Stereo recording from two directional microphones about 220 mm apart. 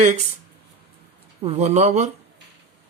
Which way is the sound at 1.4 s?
30° right (ahead or behind).